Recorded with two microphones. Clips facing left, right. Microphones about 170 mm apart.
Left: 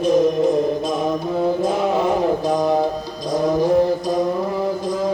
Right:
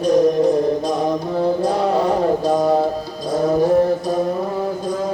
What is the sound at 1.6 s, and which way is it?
Music, 20° left (ahead or behind).